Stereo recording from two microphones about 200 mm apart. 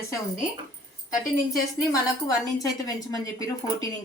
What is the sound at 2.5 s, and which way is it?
A woman's voice, 15° left (ahead or behind).